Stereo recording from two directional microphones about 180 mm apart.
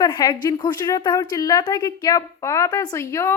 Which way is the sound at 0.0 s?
25° left (ahead or behind).